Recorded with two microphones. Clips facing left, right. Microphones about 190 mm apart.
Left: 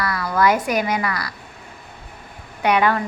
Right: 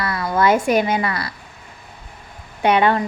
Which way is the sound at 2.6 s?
25° right (ahead or behind).